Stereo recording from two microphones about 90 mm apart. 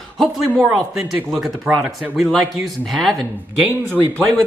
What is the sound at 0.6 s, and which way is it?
Speech, 5° right (ahead or behind).